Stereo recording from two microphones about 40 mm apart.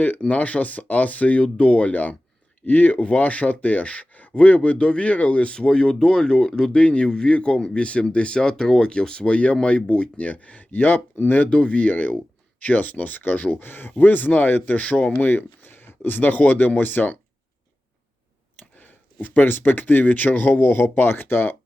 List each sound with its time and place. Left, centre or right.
0.2 s speech: left
5.5 s speech: left
6.7 s speech: left
7.1 s speech: left
7.3 s speech: left
10.2 s speech: left
11.4 s speech: left
14.0 s speech: left
14.8 s speech: left
15.3 s speech: left
19.2 s speech: left